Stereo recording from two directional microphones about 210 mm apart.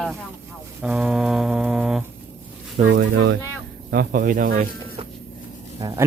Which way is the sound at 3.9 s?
45° right (ahead or behind).